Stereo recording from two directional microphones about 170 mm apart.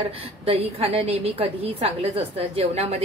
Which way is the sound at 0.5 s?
35° right (ahead or behind).